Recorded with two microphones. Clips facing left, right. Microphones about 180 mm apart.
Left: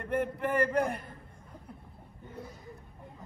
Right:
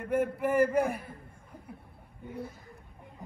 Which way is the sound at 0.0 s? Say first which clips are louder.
Right 3 dB; 5° right (ahead or behind).